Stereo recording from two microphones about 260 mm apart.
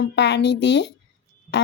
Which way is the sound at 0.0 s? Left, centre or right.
Left.